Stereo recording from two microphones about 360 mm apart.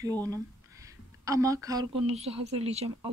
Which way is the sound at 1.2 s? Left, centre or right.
Centre.